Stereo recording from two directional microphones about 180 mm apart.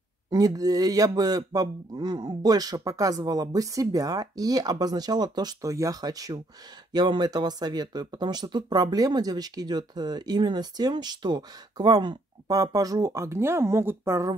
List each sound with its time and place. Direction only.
0.3 s speech: 20° right (ahead or behind)